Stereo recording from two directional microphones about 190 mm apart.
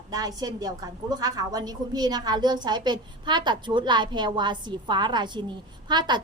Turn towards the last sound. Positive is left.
turn(degrees=-25)  # may be behind; listen again after turning